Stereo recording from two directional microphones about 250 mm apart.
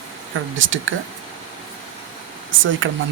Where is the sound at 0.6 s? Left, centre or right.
Right.